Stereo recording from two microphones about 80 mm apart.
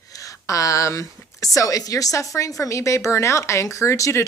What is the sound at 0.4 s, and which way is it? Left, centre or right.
A woman's voice, left.